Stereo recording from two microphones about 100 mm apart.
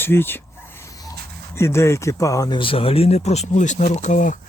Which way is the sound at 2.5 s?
60° left (ahead or behind).